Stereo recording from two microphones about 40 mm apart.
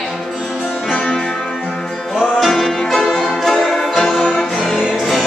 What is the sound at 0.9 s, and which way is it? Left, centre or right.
Music, centre.